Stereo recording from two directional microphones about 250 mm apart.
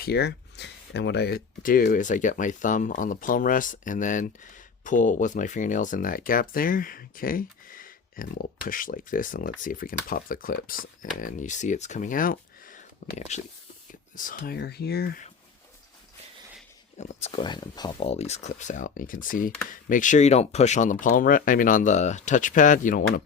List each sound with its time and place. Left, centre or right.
0.0 s speech: left
17.0 s speech: left